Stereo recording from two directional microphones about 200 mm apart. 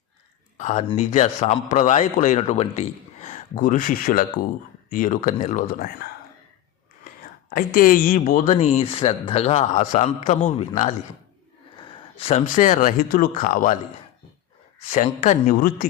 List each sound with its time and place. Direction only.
0.5 s a man's voice: 35° left (ahead or behind)
7.5 s a man's voice: 45° left (ahead or behind)
11.8 s a sound: 30° left (ahead or behind)
12.5 s a man's voice: 40° left (ahead or behind)
14.8 s a man's voice: 35° left (ahead or behind)